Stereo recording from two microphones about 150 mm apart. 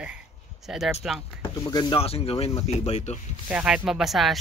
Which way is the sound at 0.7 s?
Centre (ahead or behind).